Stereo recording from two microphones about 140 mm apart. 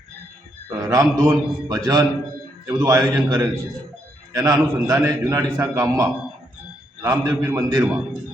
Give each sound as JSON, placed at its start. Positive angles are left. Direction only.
{"t": 0.7, "sound": "a man's voice", "side_deg": -25}